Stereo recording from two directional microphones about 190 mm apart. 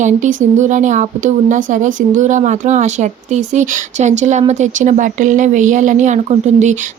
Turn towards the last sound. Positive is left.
turn(degrees=-40)  # may be behind; listen again after turning